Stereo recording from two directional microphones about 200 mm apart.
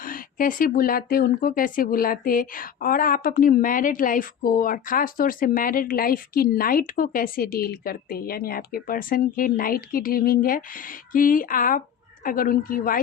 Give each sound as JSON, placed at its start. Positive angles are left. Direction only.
{"t": 0.0, "sound": "speech", "side_deg": 45}